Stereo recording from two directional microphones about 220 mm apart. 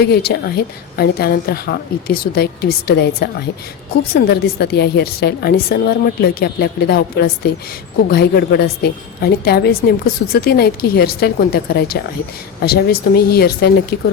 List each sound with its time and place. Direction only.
0.0 s a woman's voice: 45° left (ahead or behind)